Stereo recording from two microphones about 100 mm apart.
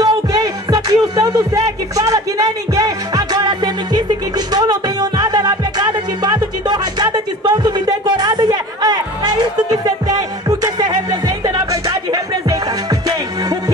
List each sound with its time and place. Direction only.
0.0 s music: 40° right (ahead or behind)